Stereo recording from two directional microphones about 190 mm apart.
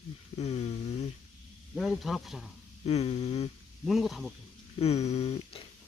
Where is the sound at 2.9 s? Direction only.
35° left (ahead or behind).